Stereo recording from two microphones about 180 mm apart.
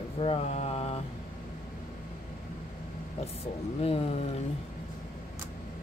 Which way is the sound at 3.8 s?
35° left (ahead or behind).